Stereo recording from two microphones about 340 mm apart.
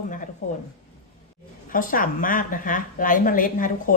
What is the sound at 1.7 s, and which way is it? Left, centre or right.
A woman's voice, left.